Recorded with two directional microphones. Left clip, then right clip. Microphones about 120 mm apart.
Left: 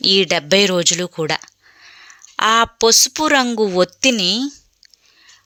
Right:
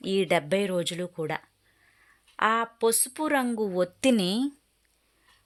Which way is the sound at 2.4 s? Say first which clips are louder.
Left 10 dB; 35° left (ahead or behind).